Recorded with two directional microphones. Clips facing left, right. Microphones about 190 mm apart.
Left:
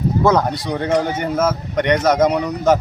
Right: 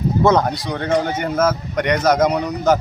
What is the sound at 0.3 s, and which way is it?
A man's voice, 5° left (ahead or behind).